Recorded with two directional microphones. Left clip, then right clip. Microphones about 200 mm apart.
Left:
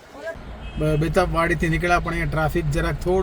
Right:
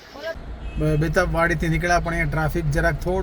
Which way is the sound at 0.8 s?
10° left (ahead or behind).